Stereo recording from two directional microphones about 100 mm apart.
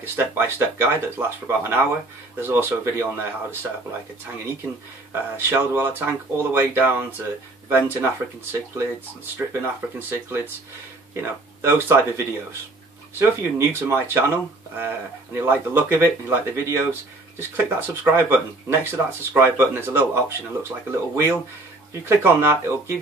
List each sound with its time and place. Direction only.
0.0 s speech: 25° right (ahead or behind)
5.1 s speech: 20° right (ahead or behind)